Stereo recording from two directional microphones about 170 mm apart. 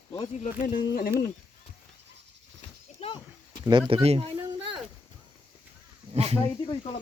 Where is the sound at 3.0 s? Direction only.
35° left (ahead or behind).